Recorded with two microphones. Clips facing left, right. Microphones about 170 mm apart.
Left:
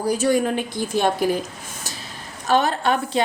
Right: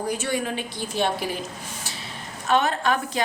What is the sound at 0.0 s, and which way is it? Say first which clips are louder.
A woman's voice: left 7 dB; 40° left (ahead or behind).